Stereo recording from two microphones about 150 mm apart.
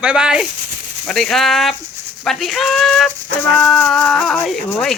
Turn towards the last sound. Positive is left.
turn(degrees=0)  # may be behind; listen again after turning